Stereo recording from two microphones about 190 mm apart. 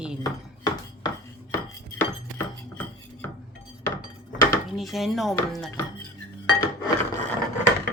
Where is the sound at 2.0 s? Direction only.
10° left (ahead or behind).